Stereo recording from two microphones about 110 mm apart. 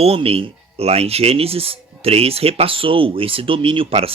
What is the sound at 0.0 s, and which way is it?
Speech, 65° right (ahead or behind).